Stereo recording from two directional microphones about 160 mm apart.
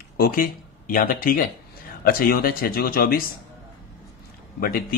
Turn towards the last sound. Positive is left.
turn(degrees=65)  # may be behind; listen again after turning